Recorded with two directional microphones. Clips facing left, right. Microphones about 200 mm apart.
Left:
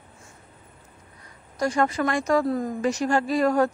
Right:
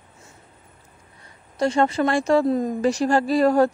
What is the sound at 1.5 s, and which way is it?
Speech, 25° right (ahead or behind).